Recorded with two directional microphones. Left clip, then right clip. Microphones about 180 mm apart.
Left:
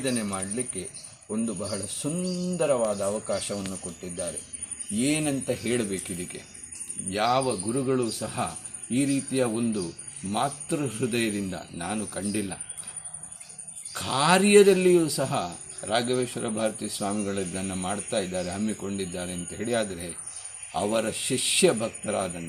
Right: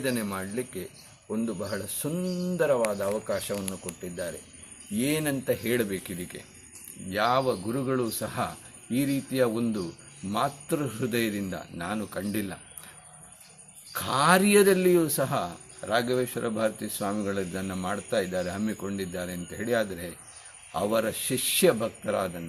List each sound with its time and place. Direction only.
0.1 s speech: 10° right (ahead or behind)
4.9 s speech: 10° right (ahead or behind)
13.9 s speech: 10° right (ahead or behind)